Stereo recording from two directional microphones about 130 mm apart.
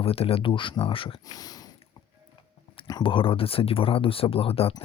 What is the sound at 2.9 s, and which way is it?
Speech, 35° left (ahead or behind).